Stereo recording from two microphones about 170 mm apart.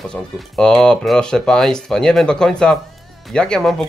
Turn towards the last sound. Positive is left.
turn(degrees=5)  # may be behind; listen again after turning